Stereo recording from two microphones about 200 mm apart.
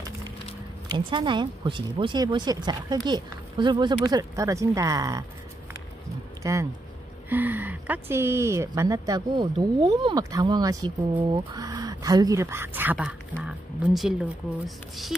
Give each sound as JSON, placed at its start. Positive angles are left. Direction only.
{"t": 0.9, "sound": "speech", "side_deg": -25}
{"t": 6.4, "sound": "speech", "side_deg": -15}